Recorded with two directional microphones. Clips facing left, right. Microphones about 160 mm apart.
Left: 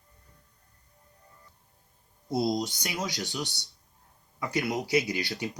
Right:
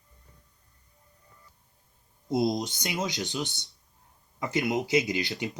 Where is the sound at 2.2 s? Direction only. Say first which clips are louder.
Right 1 dB; 20° right (ahead or behind).